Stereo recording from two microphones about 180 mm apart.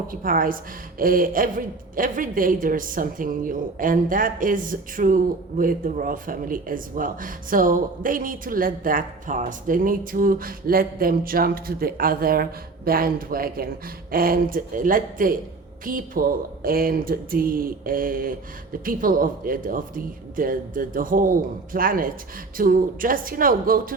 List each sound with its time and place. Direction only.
0.1 s a woman's voice: 50° right (ahead or behind)